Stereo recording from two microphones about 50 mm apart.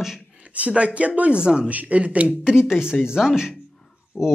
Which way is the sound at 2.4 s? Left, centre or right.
Centre.